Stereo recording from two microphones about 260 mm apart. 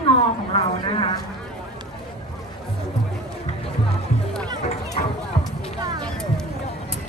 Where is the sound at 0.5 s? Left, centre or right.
Centre.